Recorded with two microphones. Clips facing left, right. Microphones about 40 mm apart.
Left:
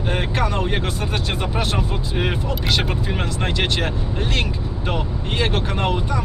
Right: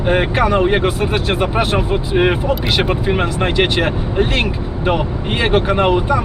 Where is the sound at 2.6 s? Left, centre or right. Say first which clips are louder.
Right 6 dB; centre.